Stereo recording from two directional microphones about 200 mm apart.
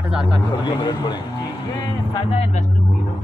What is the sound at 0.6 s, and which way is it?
A man's voice, 20° left (ahead or behind).